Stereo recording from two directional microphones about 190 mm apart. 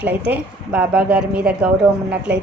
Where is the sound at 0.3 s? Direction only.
10° right (ahead or behind).